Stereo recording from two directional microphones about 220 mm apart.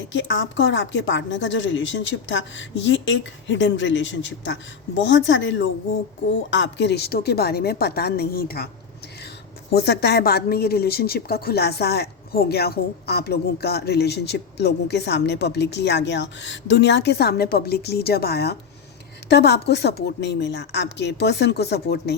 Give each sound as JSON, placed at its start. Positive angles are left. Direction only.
{"t": 0.1, "sound": "a woman's voice", "side_deg": 55}
{"t": 9.7, "sound": "a woman's voice", "side_deg": 50}